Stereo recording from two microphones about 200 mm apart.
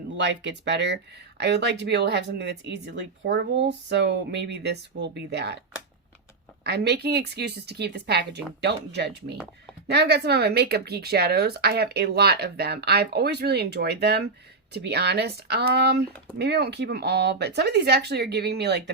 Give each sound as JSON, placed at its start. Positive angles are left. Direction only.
{"t": 0.2, "sound": "speech", "side_deg": -60}
{"t": 6.7, "sound": "speech", "side_deg": -55}